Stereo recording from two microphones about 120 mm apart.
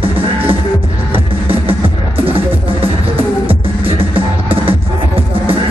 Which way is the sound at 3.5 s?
50° right (ahead or behind).